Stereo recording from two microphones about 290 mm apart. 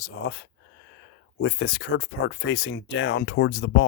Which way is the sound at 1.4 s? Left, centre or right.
Left.